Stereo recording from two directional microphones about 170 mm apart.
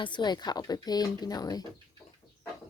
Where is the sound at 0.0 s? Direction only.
25° left (ahead or behind).